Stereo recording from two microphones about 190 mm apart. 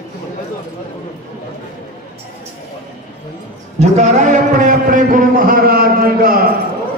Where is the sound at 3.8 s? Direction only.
40° right (ahead or behind).